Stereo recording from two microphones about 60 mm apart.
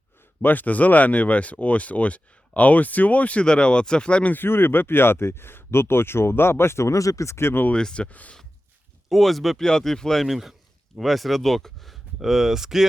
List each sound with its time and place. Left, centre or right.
0.4 s speech: left
4.4 s speech: left
7.7 s speech: centre
9.0 s speech: centre